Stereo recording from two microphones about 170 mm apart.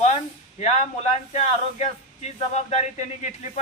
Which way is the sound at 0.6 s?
40° left (ahead or behind).